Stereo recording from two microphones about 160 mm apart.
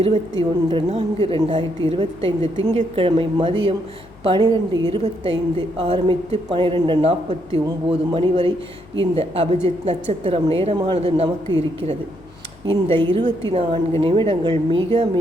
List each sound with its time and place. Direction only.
0.0 s a woman's voice: 35° right (ahead or behind)
12.6 s a woman's voice: 30° right (ahead or behind)